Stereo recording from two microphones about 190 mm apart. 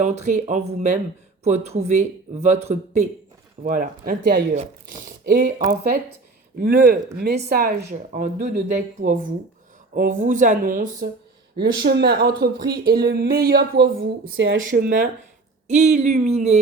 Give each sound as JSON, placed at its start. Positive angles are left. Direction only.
{"t": 0.0, "sound": "speech", "side_deg": -35}
{"t": 11.5, "sound": "speech", "side_deg": -55}
{"t": 14.3, "sound": "speech", "side_deg": -80}
{"t": 14.7, "sound": "speech", "side_deg": -45}